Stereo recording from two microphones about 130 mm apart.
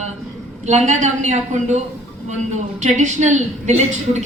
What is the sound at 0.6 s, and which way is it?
A woman's voice, 65° right (ahead or behind).